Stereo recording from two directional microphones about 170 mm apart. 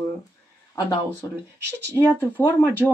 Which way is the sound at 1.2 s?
20° left (ahead or behind).